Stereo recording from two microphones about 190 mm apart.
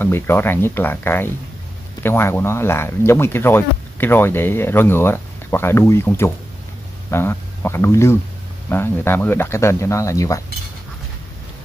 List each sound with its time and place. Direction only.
0.0 s speech: 10° left (ahead or behind)